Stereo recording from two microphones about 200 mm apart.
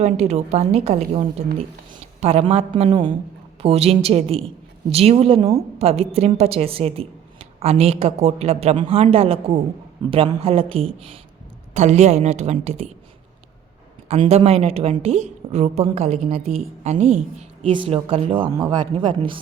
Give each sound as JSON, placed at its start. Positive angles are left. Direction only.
{"t": 0.0, "sound": "a woman's voice", "side_deg": -35}
{"t": 14.1, "sound": "a woman's voice", "side_deg": -30}